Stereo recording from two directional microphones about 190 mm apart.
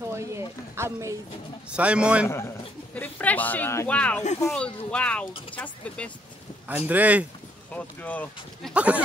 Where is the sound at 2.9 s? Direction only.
10° left (ahead or behind).